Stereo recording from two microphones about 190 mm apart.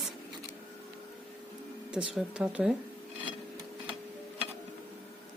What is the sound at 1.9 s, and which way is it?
Speech, 5° right (ahead or behind).